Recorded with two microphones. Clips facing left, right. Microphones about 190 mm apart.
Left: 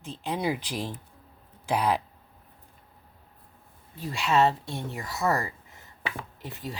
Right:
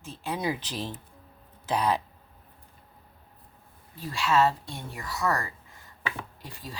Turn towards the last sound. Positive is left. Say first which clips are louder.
# left 5 dB
turn(degrees=20)  # may be behind; listen again after turning